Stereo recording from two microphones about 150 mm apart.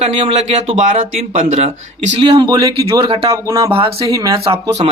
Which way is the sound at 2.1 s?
35° right (ahead or behind).